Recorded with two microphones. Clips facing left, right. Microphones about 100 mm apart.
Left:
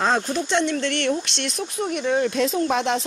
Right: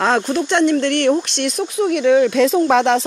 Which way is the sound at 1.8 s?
85° right.